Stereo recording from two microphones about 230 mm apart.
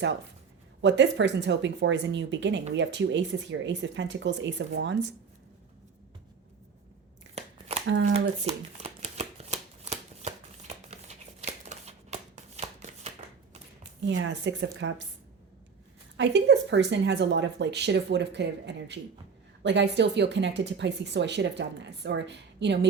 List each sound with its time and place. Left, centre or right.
0.8 s speech: right
8.1 s shuffling cards: right
14.3 s speech: right
16.1 s speech: right